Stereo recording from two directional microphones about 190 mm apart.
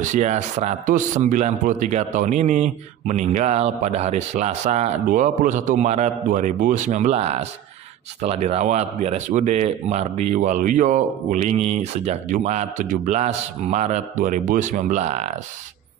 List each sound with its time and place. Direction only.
0.0 s a man's voice: 40° right (ahead or behind)